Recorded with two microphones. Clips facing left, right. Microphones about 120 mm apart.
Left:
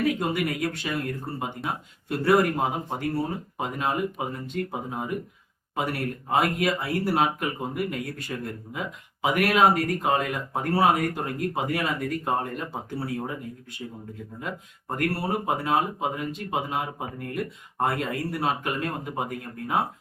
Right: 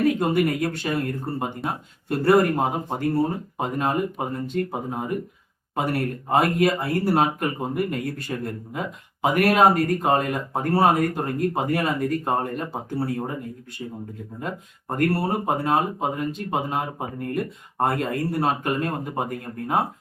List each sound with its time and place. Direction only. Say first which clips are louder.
0.0 s speech: right 5 dB; 40° right (ahead or behind)
14.4 s speech: right 3 dB; 40° right (ahead or behind)